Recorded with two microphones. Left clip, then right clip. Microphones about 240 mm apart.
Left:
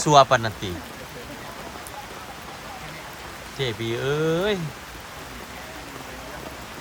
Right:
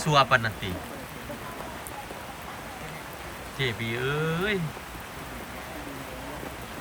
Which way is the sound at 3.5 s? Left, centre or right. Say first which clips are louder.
Left 3 dB; centre.